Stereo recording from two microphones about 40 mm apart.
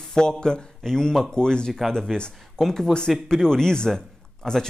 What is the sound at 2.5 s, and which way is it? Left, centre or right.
A man's voice, centre.